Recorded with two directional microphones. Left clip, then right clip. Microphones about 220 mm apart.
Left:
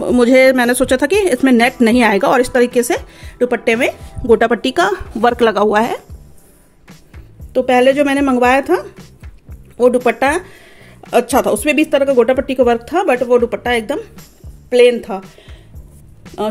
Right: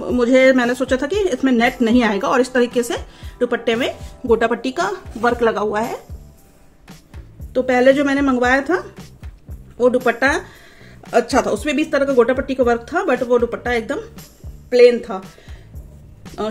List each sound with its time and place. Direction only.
0.0 s a woman's voice: 35° left (ahead or behind)
7.5 s a woman's voice: 30° left (ahead or behind)
10.0 s a woman's voice: 30° left (ahead or behind)
16.3 s music: centre (ahead or behind)